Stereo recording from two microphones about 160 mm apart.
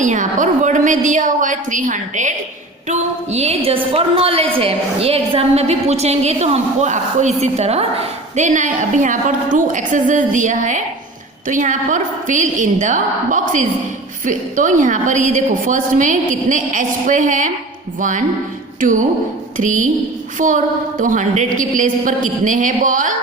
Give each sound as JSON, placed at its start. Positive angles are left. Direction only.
{"t": 0.0, "sound": "a woman's voice", "side_deg": -50}
{"t": 2.9, "sound": "a woman's voice", "side_deg": -40}
{"t": 18.8, "sound": "a woman's voice", "side_deg": -55}